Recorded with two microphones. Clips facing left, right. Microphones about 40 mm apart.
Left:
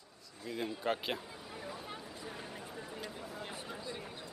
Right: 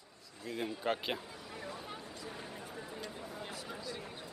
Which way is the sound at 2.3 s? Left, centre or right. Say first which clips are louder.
Even; centre.